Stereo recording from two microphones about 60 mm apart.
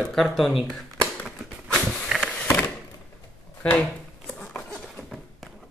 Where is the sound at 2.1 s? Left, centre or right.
Centre.